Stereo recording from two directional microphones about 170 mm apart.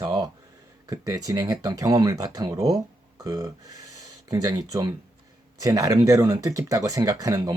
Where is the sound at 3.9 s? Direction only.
20° right (ahead or behind).